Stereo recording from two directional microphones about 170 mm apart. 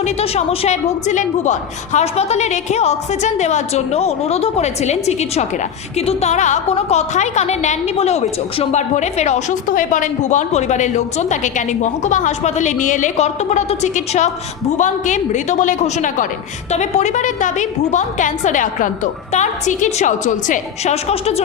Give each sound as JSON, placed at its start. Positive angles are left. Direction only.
{"t": 0.0, "sound": "a woman's voice", "side_deg": 40}